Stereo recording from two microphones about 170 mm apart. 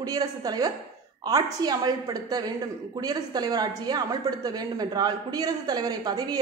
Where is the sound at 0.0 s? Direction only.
20° right (ahead or behind).